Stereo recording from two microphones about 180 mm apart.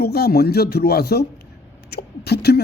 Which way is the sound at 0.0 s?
60° left (ahead or behind).